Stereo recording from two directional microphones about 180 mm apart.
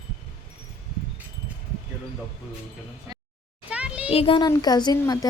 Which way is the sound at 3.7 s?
5° right (ahead or behind).